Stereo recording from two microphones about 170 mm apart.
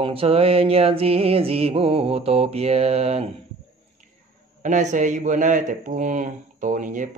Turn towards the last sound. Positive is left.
turn(degrees=-50)  # may be behind; listen again after turning